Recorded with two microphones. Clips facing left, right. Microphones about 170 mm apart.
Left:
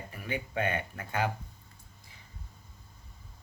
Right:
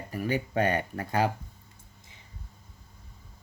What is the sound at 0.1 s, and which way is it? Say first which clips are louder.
Speech: right 8 dB; 40° right (ahead or behind).